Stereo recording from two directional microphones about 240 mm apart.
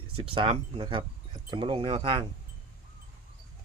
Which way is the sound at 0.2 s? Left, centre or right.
Right.